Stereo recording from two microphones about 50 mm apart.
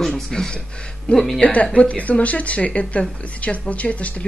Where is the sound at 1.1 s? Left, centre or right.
Left.